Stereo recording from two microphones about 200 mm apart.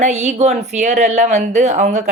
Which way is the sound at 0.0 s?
35° right (ahead or behind).